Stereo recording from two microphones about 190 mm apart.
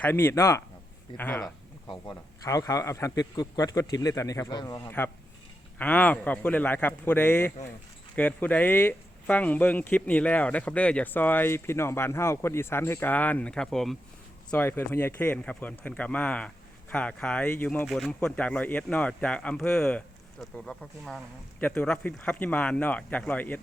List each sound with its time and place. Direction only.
0.0 s speech: 10° left (ahead or behind)